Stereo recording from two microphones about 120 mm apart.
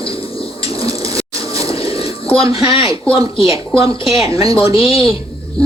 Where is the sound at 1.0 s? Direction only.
30° right (ahead or behind).